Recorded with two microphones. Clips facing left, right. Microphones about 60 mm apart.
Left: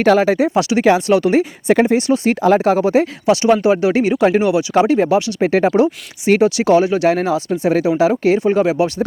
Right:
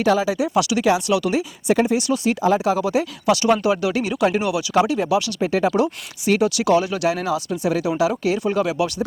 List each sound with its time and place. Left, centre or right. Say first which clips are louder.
0.0 s speech: left 6 dB; left
2.4 s speech: left 6 dB; left